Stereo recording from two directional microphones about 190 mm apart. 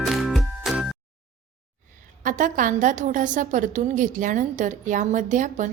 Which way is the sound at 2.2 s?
45° right (ahead or behind).